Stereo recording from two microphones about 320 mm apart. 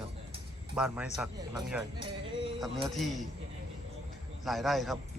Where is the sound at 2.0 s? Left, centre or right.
Centre.